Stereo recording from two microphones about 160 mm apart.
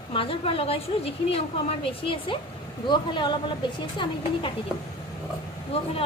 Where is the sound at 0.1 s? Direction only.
35° left (ahead or behind).